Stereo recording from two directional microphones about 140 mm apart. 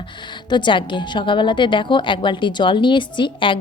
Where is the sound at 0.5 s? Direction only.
35° left (ahead or behind).